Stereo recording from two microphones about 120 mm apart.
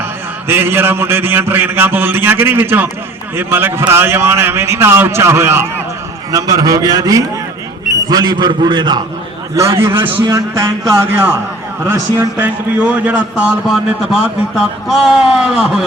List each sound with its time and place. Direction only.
0.4 s a sound: 20° right (ahead or behind)
3.3 s a man's voice: 15° right (ahead or behind); by 9.0 s 40° right (ahead or behind)
9.6 s a man's voice: 20° right (ahead or behind)
10.0 s a man's voice: 35° right (ahead or behind)
10.5 s a man's voice: 20° right (ahead or behind)
11.9 s a sound: 15° right (ahead or behind)
14.6 s speech: centre (ahead or behind)